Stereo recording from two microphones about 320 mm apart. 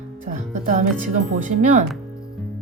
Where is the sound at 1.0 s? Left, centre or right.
Right.